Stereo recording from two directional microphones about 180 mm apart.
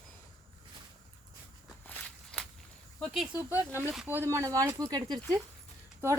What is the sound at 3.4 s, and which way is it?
Speech, 10° right (ahead or behind).